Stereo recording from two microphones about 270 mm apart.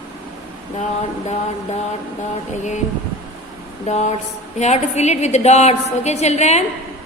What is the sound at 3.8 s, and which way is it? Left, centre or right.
A woman's voice, left.